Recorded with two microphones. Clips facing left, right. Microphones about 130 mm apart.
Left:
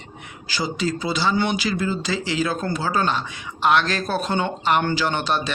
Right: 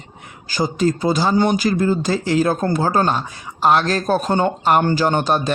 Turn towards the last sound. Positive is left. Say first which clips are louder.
# right 5 dB
turn(degrees=-45)  # may be behind; listen again after turning